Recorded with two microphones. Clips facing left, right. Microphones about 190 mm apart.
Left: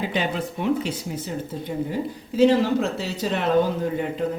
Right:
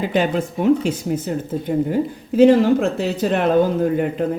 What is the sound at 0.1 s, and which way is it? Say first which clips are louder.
Speech: right 6 dB; 45° right (ahead or behind).